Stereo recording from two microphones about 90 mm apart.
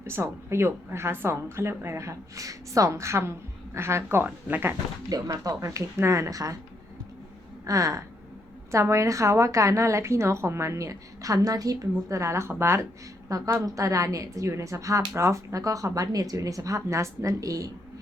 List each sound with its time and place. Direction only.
0.0 s a woman's voice: 30° right (ahead or behind)
5.0 s a woman's voice: 40° right (ahead or behind)
7.6 s a sound: 40° right (ahead or behind)
8.7 s a woman's voice: 35° right (ahead or behind)